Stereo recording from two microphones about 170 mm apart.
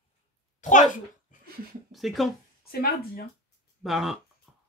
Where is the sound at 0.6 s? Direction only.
50° left (ahead or behind).